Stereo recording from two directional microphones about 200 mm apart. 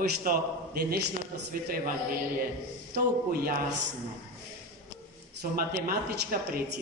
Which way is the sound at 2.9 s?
50° right (ahead or behind).